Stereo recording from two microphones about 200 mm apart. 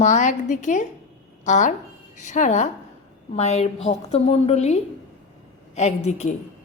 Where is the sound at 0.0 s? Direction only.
40° left (ahead or behind).